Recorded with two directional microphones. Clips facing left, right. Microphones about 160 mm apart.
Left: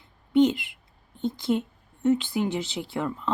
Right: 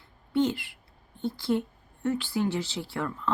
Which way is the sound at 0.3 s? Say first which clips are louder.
Left 6 dB; 20° left (ahead or behind).